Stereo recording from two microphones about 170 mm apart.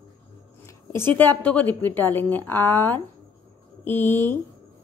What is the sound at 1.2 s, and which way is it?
A woman's voice, 10° left (ahead or behind).